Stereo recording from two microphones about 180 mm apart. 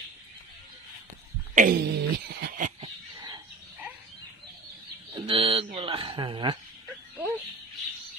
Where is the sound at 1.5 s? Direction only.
45° right (ahead or behind).